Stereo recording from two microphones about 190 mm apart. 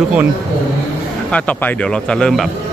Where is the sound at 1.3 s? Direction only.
5° left (ahead or behind).